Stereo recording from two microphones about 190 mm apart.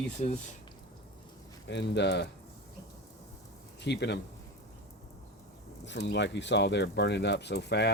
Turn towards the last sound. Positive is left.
turn(degrees=60)  # may be behind; listen again after turning